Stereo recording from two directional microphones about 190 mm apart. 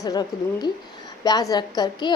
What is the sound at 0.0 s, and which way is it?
A woman's voice, 20° left (ahead or behind).